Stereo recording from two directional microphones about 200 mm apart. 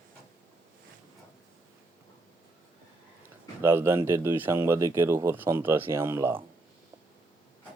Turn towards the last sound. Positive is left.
turn(degrees=-10)  # may be behind; listen again after turning